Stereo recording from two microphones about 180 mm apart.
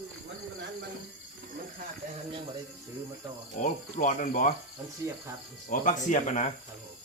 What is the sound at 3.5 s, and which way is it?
Cricket, 45° left (ahead or behind).